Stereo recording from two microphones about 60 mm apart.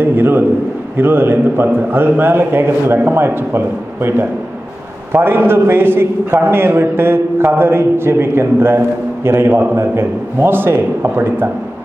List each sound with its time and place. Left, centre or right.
0.0 s a man's voice: right